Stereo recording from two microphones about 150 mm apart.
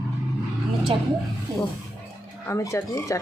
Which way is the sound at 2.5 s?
20° left (ahead or behind).